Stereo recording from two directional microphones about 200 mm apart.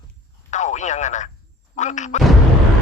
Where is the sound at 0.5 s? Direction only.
35° left (ahead or behind).